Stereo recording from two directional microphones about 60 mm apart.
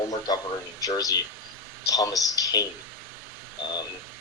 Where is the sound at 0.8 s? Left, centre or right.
Left.